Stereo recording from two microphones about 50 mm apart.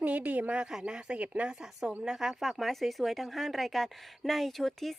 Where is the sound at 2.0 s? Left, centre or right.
Centre.